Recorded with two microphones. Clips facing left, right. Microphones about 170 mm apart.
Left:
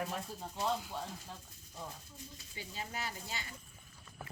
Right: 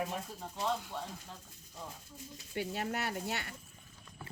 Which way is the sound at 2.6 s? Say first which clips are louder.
Right 8 dB; 65° right (ahead or behind).